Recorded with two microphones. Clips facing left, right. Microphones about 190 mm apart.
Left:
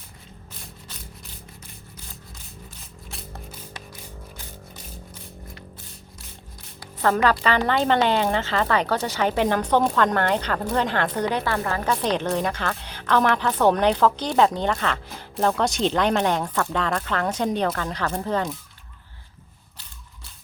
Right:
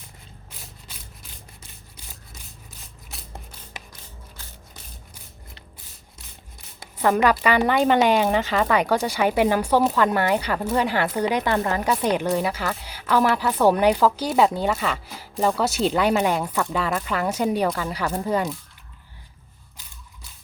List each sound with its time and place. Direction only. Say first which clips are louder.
6.7 s speech: right 1 dB; 15° right (ahead or behind)